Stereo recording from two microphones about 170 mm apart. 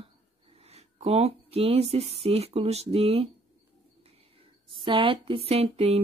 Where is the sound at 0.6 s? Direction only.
35° right (ahead or behind).